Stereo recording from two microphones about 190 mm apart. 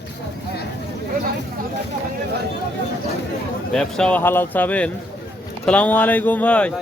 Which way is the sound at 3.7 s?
5° left (ahead or behind).